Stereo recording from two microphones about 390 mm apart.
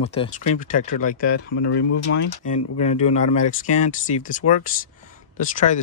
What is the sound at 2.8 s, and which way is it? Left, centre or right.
Speech, centre.